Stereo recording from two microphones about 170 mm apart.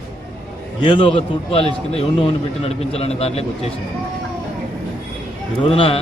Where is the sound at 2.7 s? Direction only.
35° left (ahead or behind).